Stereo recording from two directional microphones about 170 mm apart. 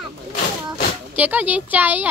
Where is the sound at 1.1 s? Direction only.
10° right (ahead or behind).